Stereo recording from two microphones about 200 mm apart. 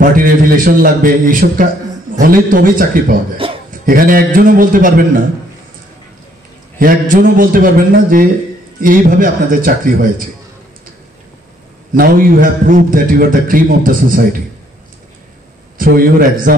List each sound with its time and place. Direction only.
0.0 s a man's voice: 45° right (ahead or behind)
3.4 s dog: 25° right (ahead or behind)
3.8 s a man's voice: 45° right (ahead or behind)
6.8 s a man's voice: 45° right (ahead or behind)
11.9 s a man's voice: 45° right (ahead or behind)
15.8 s a man's voice: 45° right (ahead or behind)